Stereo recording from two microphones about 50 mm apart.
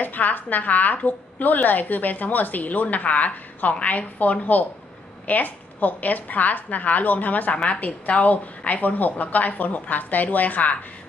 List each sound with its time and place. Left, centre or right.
0.0 s a woman's voice: left